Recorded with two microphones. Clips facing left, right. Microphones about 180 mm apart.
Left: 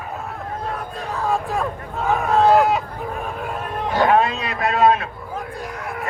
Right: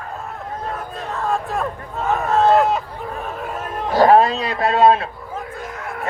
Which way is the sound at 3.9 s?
35° right (ahead or behind).